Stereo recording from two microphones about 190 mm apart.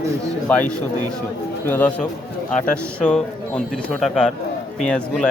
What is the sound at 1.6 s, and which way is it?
Speech, 10° left (ahead or behind).